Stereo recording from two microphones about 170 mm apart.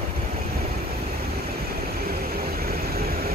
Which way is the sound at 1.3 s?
65° right (ahead or behind).